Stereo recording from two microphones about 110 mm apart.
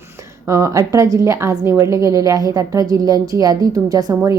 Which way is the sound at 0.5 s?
30° right (ahead or behind).